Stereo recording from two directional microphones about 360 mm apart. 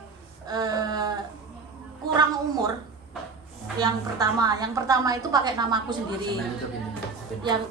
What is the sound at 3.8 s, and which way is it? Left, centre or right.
Speech, centre.